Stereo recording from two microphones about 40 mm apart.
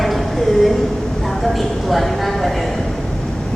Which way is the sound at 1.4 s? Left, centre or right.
Centre.